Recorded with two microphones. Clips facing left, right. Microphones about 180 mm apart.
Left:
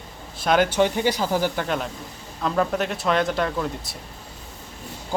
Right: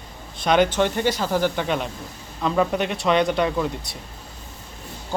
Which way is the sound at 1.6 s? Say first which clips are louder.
Right 1 dB; centre (ahead or behind).